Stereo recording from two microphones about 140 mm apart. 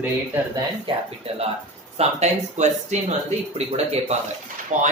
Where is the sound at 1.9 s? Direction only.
50° right (ahead or behind).